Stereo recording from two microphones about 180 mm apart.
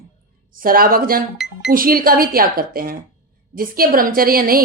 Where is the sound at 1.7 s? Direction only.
55° right (ahead or behind).